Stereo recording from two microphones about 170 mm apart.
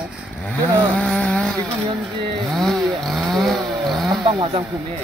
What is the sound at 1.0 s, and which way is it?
Vehicle, 5° left (ahead or behind).